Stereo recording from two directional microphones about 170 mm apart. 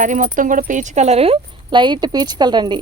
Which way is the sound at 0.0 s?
50° right (ahead or behind).